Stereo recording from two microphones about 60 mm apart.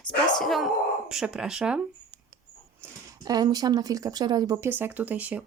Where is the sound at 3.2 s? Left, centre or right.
Right.